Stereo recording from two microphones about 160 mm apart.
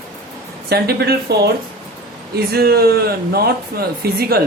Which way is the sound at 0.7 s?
80° right.